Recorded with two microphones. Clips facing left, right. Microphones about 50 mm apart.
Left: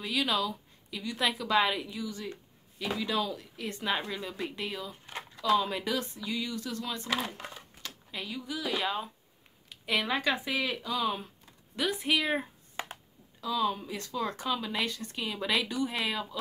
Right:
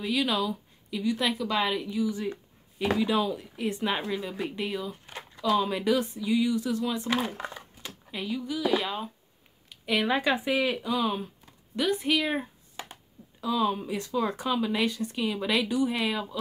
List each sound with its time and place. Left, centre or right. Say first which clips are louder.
0.0 s speech: right 3 dB; centre
2.0 s speech: right 8 dB; centre
9.7 s a sound: right 3 dB; centre
10.0 s speech: right 4 dB; centre
13.4 s speech: right 3 dB; centre